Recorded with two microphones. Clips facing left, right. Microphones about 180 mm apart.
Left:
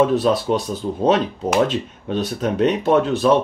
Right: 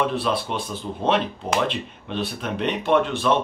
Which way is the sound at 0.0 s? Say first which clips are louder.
Left 7 dB; 40° left (ahead or behind).